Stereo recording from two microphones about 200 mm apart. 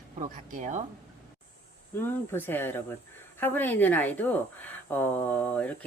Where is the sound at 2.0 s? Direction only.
10° left (ahead or behind).